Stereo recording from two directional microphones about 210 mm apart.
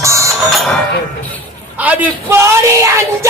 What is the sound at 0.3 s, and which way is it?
Music, centre (ahead or behind).